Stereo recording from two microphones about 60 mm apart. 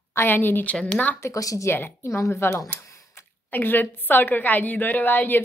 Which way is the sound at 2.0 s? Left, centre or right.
Left.